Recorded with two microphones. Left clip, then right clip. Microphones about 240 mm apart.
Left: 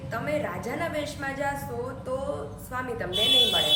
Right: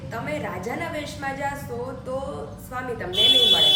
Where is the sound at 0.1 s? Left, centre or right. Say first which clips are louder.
Even; centre.